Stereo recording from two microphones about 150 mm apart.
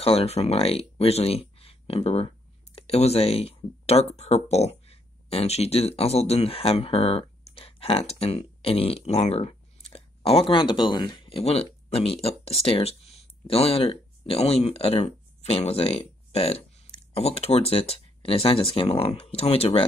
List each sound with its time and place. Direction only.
0.0 s speech: 40° left (ahead or behind)